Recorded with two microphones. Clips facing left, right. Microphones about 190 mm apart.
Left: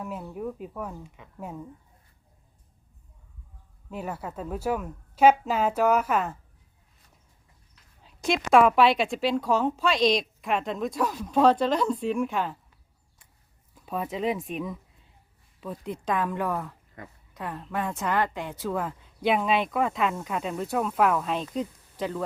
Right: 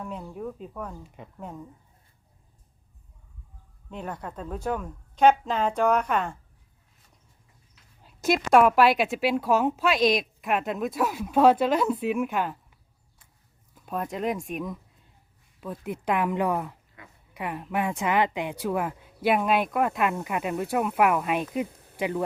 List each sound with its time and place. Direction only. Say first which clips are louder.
0.0 s a woman's voice: left 1 dB; 5° left (ahead or behind)
3.8 s a woman's voice: left 1 dB; 5° left (ahead or behind)
8.0 s a woman's voice: right 2 dB; 5° right (ahead or behind)
13.7 s a woman's voice: even; centre (ahead or behind); by 16.7 s 15° right (ahead or behind)
17.0 s speech: left 9 dB; 45° left (ahead or behind)
17.3 s speech: right 3 dB; 10° right (ahead or behind)